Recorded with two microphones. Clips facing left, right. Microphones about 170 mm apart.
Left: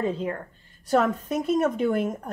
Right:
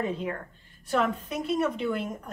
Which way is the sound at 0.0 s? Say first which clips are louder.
Left 3 dB; 30° left (ahead or behind).